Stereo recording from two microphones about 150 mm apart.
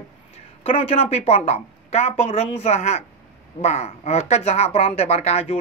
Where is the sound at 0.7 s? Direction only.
40° left (ahead or behind).